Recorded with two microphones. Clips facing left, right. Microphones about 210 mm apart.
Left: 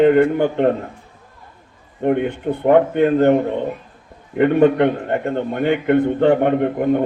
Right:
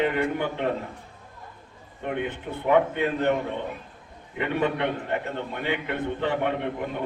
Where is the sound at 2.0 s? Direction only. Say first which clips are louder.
Left 11 dB; 55° left (ahead or behind).